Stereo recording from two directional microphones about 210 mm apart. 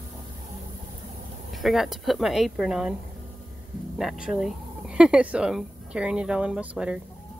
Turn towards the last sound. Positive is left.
turn(degrees=-5)  # may be behind; listen again after turning